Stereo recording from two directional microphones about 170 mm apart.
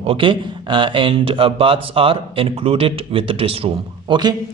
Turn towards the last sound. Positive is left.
turn(degrees=-25)  # may be behind; listen again after turning